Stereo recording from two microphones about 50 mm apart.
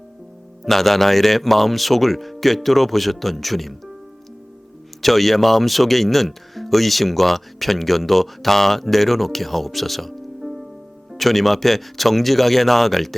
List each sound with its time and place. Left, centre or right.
0.6 s speech: centre
5.0 s speech: centre